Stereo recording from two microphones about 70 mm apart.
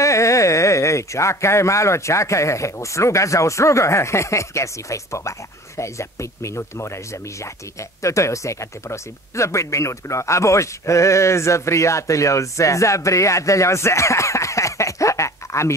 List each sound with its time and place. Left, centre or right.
0.0 s speech: left
8.0 s speech: left